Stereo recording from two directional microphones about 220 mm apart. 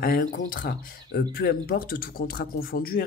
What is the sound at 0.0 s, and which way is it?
Speech, 45° left (ahead or behind).